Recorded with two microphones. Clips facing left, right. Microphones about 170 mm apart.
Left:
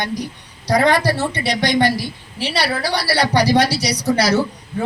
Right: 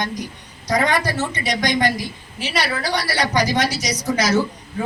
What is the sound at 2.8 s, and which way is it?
A man's voice, 35° left (ahead or behind).